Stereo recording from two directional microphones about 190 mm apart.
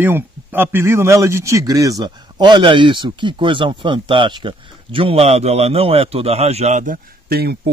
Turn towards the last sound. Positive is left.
turn(degrees=-55)  # may be behind; listen again after turning